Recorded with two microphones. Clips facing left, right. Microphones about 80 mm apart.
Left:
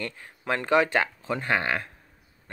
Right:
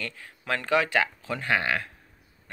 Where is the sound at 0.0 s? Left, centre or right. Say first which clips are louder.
Left 3 dB; left.